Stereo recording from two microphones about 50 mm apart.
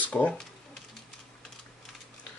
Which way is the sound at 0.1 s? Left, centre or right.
Left.